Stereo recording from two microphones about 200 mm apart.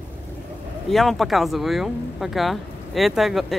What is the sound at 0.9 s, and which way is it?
Speech, centre (ahead or behind).